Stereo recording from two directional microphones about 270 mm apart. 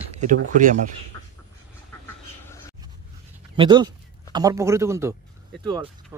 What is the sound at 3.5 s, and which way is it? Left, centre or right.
Speech, centre.